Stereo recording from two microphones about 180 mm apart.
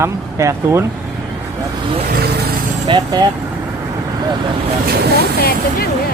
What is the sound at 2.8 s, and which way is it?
Speech, 25° right (ahead or behind).